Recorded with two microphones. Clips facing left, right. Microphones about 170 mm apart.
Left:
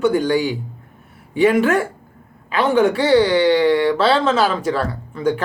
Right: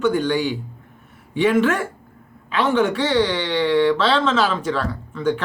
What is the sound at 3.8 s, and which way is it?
Speech, 10° left (ahead or behind).